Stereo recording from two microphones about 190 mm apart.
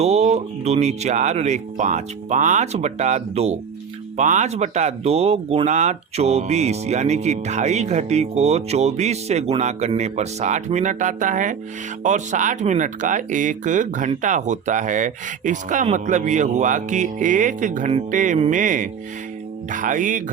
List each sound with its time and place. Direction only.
0.0 s speech: 35° right (ahead or behind)
19.7 s music: 45° right (ahead or behind)